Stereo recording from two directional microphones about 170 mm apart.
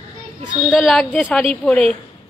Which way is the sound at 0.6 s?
Centre (ahead or behind).